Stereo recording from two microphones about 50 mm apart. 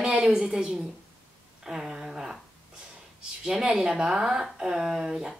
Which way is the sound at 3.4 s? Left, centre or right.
Centre.